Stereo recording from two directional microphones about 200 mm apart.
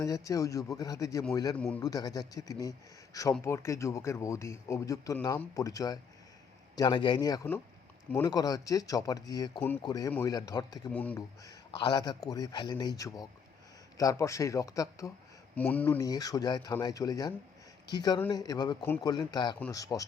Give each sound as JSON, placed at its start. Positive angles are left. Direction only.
{"t": 0.0, "sound": "a man's voice", "side_deg": 15}
{"t": 1.5, "sound": "speech", "side_deg": 5}
{"t": 1.8, "sound": "a man's voice", "side_deg": 20}
{"t": 10.9, "sound": "speech", "side_deg": 5}
{"t": 11.4, "sound": "a man's voice", "side_deg": 20}